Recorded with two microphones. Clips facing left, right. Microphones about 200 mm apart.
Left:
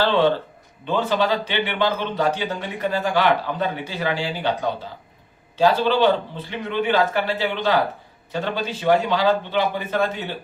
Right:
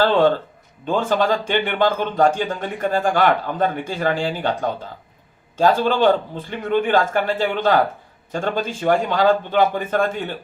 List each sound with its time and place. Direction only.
0.0 s speech: 45° right (ahead or behind)